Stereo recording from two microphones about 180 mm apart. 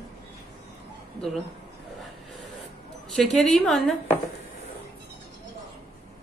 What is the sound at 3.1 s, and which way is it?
A woman's voice, 5° left (ahead or behind).